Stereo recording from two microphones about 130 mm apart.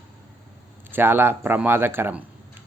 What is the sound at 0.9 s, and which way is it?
Speech, 15° right (ahead or behind).